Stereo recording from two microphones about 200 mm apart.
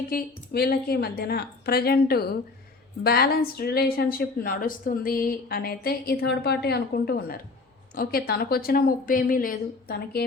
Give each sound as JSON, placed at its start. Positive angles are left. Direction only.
{"t": 0.1, "sound": "speech", "side_deg": 50}